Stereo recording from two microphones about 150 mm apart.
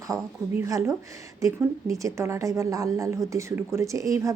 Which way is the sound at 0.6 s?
20° right (ahead or behind).